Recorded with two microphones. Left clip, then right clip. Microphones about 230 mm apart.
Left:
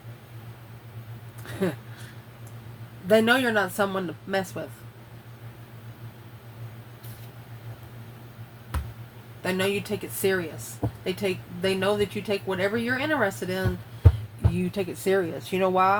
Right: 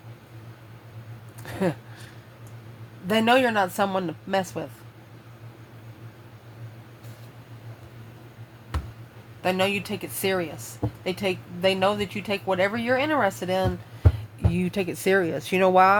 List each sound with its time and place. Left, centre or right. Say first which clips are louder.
1.5 s a sound: right 2 dB; right
3.1 s speech: even; right
9.4 s speech: right 3 dB; right